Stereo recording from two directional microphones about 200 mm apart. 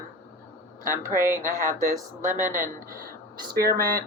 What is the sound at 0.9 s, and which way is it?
Speech, 10° right (ahead or behind).